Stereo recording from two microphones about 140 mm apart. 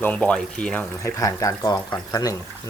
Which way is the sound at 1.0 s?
25° left (ahead or behind).